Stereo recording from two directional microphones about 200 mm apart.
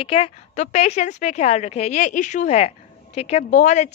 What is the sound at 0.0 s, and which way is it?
A woman's voice, 30° left (ahead or behind).